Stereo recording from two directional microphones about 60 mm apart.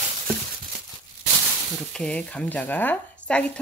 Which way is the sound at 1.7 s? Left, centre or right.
Centre.